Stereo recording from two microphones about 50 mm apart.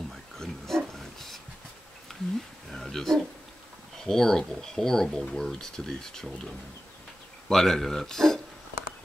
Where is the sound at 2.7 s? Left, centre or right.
Centre.